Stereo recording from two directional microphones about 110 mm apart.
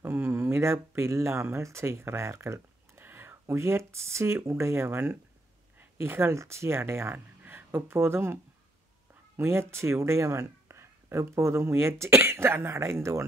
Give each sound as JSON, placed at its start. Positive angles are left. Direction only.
{"t": 0.0, "sound": "speech", "side_deg": -20}
{"t": 9.4, "sound": "speech", "side_deg": -20}